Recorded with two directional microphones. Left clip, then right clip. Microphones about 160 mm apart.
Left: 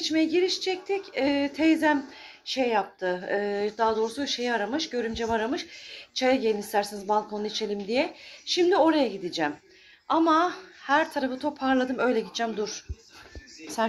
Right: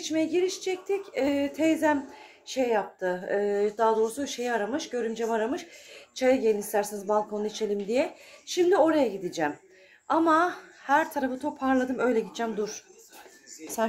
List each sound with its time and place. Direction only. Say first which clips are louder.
0.0 s speech: left 2 dB; 5° right (ahead or behind)
10.0 s a woman's voice: left 1 dB; 25° right (ahead or behind)
11.0 s speech: left 1 dB; 10° right (ahead or behind)